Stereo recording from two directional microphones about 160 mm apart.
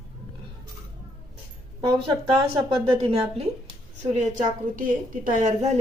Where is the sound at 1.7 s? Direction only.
30° right (ahead or behind).